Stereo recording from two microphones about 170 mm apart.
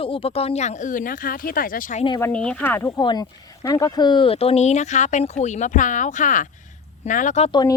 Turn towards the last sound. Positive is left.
turn(degrees=25)  # may be behind; listen again after turning